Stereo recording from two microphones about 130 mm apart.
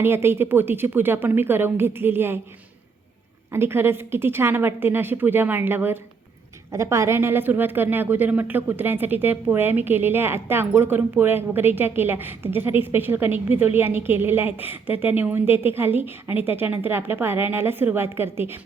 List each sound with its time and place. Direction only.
0.0 s a woman's voice: 20° right (ahead or behind)
3.5 s a woman's voice: 20° right (ahead or behind)